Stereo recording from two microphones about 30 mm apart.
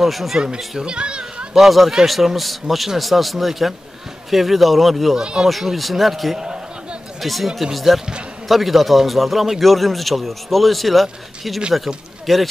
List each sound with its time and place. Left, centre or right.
0.0 s a man's voice: centre
0.7 s a child's voice: right
1.7 s a man's voice: centre
6.3 s a sound: right
7.2 s a man's voice: centre